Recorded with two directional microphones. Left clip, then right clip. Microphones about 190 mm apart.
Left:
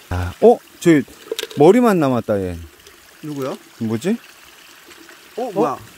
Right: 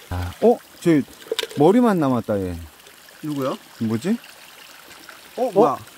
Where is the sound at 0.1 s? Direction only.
35° left (ahead or behind).